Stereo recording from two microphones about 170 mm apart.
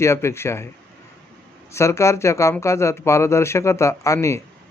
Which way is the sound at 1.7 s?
15° left (ahead or behind).